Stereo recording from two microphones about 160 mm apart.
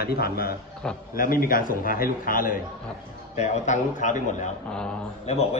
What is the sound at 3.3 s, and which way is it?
A man's voice, 45° left (ahead or behind).